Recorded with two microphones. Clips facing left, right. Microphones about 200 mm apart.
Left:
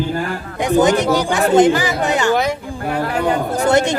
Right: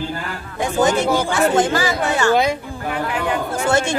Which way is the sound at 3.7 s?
20° left (ahead or behind).